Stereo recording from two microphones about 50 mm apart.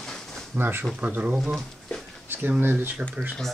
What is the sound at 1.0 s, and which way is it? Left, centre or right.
Speech, right.